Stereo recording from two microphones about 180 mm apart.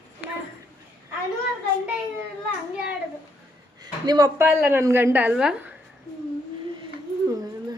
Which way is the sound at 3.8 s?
20° right (ahead or behind).